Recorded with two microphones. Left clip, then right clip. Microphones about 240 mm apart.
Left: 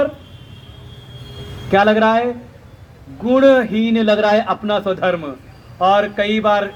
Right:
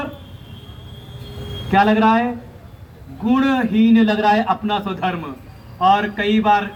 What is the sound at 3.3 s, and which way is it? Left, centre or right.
A man's voice, left.